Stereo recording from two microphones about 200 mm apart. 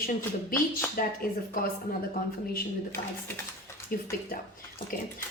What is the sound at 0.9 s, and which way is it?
Speech, 45° left (ahead or behind).